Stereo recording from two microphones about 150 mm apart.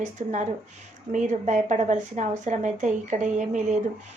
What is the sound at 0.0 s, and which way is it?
A woman's voice, 55° right (ahead or behind).